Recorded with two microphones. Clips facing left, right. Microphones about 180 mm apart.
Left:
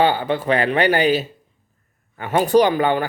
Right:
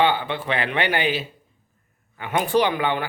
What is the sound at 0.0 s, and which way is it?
Speech, 40° left (ahead or behind).